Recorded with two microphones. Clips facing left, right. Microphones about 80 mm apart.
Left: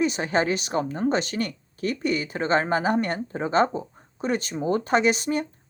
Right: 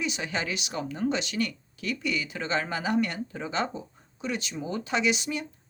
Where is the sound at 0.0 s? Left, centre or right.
Left.